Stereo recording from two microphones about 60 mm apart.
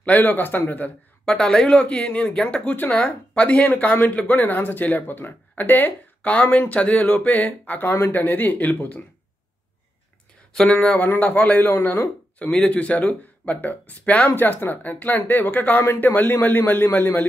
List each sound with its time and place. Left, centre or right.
0.0 s speech: left
1.2 s speech: centre
2.7 s speech: left
3.0 s speech: left
10.5 s speech: centre; by 12.1 s left
12.4 s speech: centre; by 17.3 s left